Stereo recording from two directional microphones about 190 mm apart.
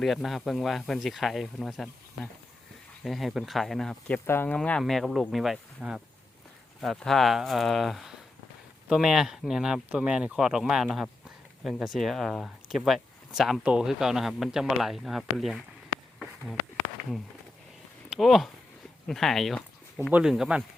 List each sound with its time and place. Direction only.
0.0 s speech: centre (ahead or behind)
16.1 s a sound: centre (ahead or behind)
18.1 s speech: centre (ahead or behind)